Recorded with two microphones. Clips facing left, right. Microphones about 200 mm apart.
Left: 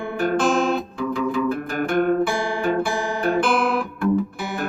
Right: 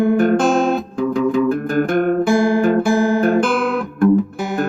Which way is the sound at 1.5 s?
50° right (ahead or behind).